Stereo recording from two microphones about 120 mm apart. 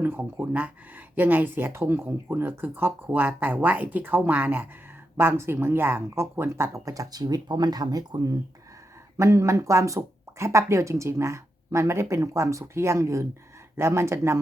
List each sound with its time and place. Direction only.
0.0 s speech: 15° right (ahead or behind)